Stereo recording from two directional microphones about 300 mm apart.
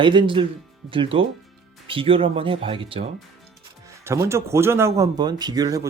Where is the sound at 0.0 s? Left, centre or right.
Centre.